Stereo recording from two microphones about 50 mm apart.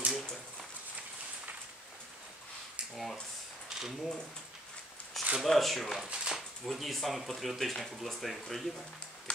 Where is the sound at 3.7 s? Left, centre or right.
Centre.